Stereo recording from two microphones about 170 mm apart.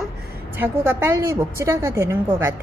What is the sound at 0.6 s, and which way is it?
Speech, 15° right (ahead or behind).